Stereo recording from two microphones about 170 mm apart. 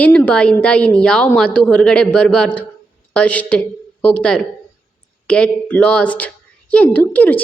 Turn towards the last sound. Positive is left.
turn(degrees=10)  # may be behind; listen again after turning